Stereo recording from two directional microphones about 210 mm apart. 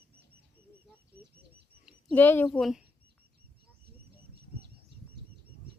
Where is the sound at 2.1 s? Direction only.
10° left (ahead or behind).